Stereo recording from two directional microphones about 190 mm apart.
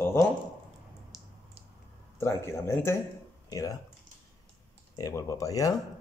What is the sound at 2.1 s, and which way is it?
Speech, 15° left (ahead or behind).